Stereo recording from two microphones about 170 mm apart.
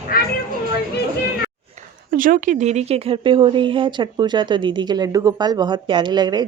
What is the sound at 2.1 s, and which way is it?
Speech, 50° right (ahead or behind).